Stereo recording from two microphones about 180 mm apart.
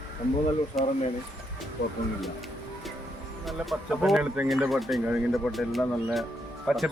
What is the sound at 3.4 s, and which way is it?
Speech, centre (ahead or behind).